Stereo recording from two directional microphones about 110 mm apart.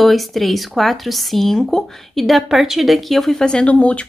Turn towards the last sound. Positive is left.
turn(degrees=10)  # may be behind; listen again after turning